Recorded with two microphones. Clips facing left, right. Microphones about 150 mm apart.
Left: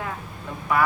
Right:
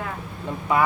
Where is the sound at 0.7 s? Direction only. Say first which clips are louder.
Right 1 dB; 20° right (ahead or behind).